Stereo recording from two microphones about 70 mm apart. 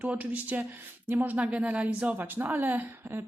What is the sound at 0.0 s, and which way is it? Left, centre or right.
Speech, right.